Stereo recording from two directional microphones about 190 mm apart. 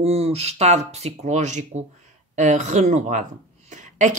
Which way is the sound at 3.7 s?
40° right (ahead or behind).